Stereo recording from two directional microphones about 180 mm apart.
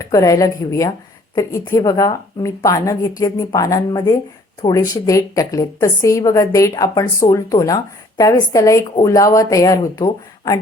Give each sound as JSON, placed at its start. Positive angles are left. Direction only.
{"t": 0.0, "sound": "a woman's voice", "side_deg": 15}